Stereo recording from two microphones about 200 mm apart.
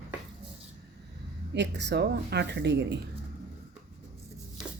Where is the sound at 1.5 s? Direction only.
60° right (ahead or behind).